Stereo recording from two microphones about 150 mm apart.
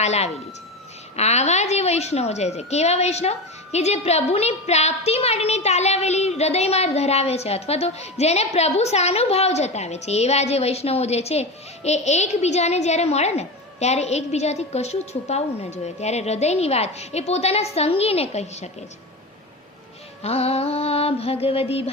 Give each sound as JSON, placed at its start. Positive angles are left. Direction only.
{"t": 0.0, "sound": "a child's voice", "side_deg": 45}
{"t": 20.2, "sound": "music", "side_deg": 45}